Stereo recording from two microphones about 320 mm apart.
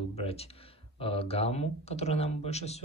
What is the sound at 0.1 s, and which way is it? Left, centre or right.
Speech, centre.